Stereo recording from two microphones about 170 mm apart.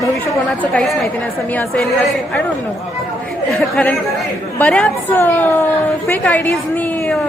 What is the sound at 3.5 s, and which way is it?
A woman's voice, 5° left (ahead or behind).